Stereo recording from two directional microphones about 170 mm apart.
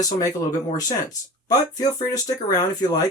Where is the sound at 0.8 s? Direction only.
20° left (ahead or behind).